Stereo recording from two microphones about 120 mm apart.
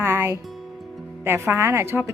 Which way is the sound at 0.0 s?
20° right (ahead or behind).